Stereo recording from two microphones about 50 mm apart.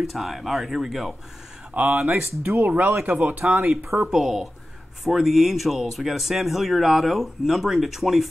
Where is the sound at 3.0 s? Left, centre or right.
Right.